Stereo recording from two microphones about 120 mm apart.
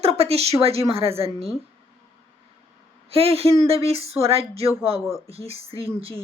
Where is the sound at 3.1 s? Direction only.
55° right (ahead or behind).